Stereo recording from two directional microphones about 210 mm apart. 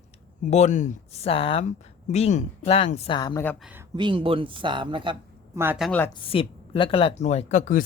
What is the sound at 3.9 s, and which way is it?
Speech, 25° right (ahead or behind).